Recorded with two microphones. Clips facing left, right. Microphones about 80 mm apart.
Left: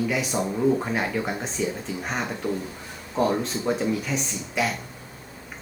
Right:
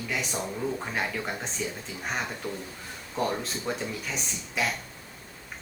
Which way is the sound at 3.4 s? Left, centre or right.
Centre.